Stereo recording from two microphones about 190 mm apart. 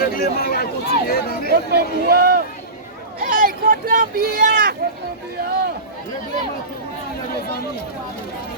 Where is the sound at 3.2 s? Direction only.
45° right (ahead or behind).